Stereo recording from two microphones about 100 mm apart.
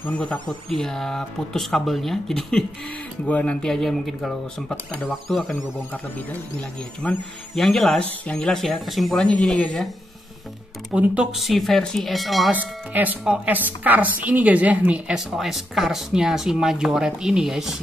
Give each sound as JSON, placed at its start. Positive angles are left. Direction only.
{"t": 0.0, "sound": "speech", "side_deg": 15}
{"t": 7.0, "sound": "speech", "side_deg": 15}
{"t": 7.5, "sound": "speech", "side_deg": 0}
{"t": 9.2, "sound": "speech", "side_deg": 10}
{"t": 10.9, "sound": "a woman's voice", "side_deg": -15}
{"t": 11.3, "sound": "speech", "side_deg": 0}
{"t": 12.4, "sound": "a woman's voice", "side_deg": -15}
{"t": 15.1, "sound": "speech", "side_deg": 0}